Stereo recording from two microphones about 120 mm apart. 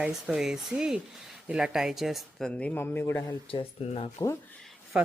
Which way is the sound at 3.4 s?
50° left (ahead or behind).